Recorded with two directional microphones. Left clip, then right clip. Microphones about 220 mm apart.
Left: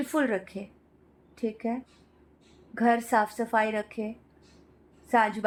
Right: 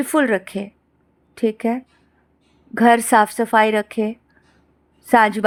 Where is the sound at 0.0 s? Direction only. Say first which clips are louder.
Right 10 dB; 30° right (ahead or behind).